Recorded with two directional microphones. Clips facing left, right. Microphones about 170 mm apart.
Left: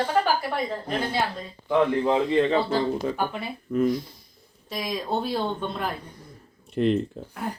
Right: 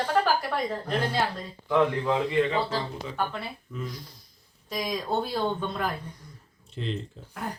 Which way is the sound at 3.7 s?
60° left (ahead or behind).